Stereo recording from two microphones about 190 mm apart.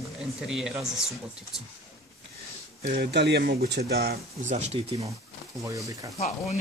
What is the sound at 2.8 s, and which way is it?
Speech, 65° right (ahead or behind).